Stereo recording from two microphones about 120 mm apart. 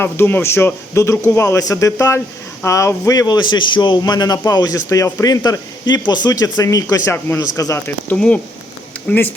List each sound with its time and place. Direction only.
0.0 s a man's voice: 15° left (ahead or behind)
8.1 s speech: 10° left (ahead or behind)